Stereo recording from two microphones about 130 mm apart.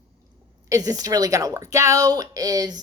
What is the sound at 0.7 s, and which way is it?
A woman's voice, 30° right (ahead or behind).